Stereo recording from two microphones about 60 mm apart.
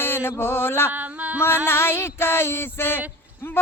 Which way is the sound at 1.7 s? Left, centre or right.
Left.